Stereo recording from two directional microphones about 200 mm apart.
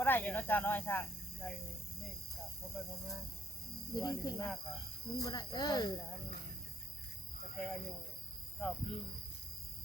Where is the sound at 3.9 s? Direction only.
20° left (ahead or behind).